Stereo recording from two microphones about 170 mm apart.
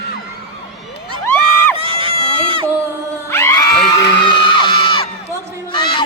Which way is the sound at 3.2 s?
15° left (ahead or behind).